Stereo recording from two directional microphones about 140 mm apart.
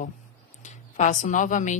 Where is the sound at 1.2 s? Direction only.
65° left (ahead or behind).